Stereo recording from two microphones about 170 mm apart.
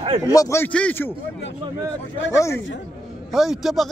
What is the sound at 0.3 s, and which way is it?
Speech, 20° left (ahead or behind).